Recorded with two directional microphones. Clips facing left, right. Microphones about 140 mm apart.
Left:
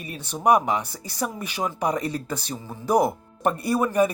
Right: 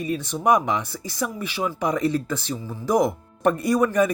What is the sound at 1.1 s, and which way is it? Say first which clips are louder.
Speech: right 1 dB; 40° left (ahead or behind).